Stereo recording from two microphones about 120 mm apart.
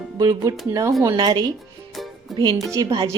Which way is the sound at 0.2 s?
30° right (ahead or behind).